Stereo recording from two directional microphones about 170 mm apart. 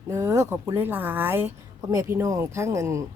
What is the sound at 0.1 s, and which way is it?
A woman's voice, 15° right (ahead or behind).